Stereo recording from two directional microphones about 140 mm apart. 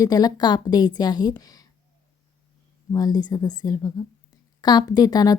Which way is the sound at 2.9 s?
25° left (ahead or behind).